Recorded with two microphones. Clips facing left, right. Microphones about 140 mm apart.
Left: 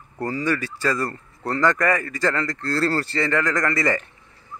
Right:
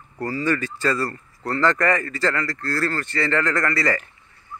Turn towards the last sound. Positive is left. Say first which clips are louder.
# even
turn(degrees=20)  # may be behind; listen again after turning